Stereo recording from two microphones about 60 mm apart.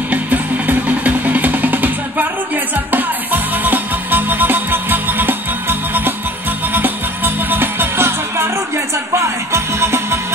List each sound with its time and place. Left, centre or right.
0.1 s music: right